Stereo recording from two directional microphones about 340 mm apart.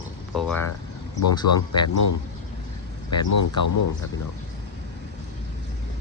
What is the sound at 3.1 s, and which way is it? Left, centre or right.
Speech, left.